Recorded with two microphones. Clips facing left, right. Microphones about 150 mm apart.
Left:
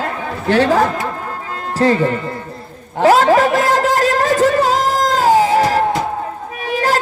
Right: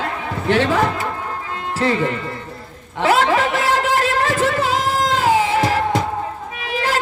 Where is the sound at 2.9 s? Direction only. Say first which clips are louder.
Left 5 dB; 40° left (ahead or behind).